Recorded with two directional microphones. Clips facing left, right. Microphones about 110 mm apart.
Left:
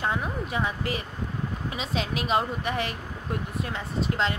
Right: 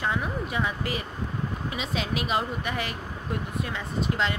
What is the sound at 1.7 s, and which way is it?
A woman's voice, 35° left (ahead or behind).